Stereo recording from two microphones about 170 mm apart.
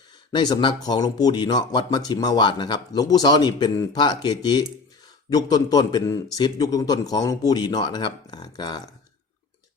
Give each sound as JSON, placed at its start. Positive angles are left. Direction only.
{"t": 0.3, "sound": "speech", "side_deg": 25}